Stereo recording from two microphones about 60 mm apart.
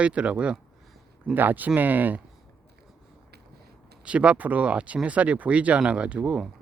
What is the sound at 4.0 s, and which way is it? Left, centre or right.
Speech, centre.